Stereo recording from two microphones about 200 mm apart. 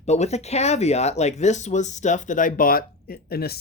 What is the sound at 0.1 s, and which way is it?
Speech, 35° left (ahead or behind).